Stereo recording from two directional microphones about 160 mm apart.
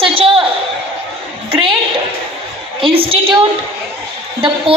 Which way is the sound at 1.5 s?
35° right (ahead or behind).